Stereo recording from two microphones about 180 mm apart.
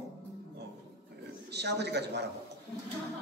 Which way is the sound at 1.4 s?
70° right (ahead or behind).